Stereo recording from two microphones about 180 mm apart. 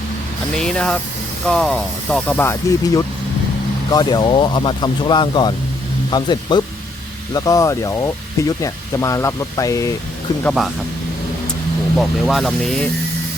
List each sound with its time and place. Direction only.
0.5 s speech: 5° left (ahead or behind); by 9.9 s 20° left (ahead or behind)
11.9 s speech: centre (ahead or behind)